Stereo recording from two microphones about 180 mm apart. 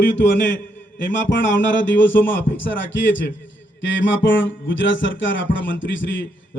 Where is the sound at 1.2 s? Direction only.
90° left.